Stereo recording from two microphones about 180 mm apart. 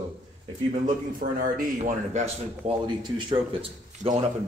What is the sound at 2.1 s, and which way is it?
Speech, 40° right (ahead or behind).